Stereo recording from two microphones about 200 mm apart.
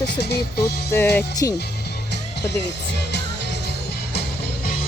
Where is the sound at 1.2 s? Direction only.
15° left (ahead or behind).